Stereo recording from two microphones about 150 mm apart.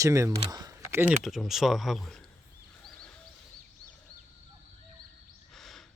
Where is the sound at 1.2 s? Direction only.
Centre (ahead or behind).